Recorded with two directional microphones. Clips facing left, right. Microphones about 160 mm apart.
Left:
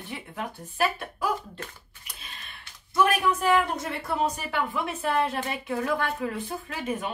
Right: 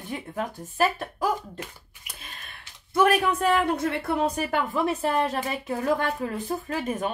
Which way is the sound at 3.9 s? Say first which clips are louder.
Right 3 dB; 55° right (ahead or behind).